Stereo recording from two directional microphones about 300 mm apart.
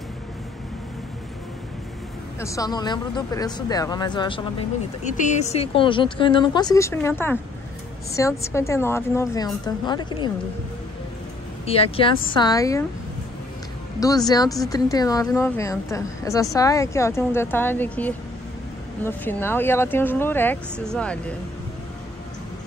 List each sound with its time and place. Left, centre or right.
2.4 s speech: centre
11.6 s speech: centre
13.9 s speech: centre